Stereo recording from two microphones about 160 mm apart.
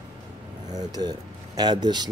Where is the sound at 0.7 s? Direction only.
25° right (ahead or behind).